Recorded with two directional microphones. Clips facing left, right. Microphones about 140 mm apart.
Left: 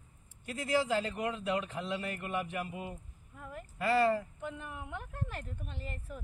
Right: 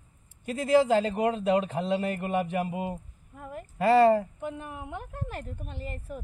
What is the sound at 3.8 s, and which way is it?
Speech, 30° right (ahead or behind).